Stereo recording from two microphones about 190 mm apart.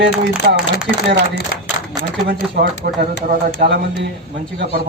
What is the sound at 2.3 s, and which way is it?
A man's voice, 55° right (ahead or behind).